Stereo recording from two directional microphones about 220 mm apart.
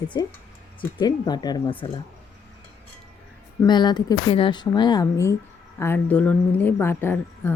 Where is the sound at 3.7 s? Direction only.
20° left (ahead or behind).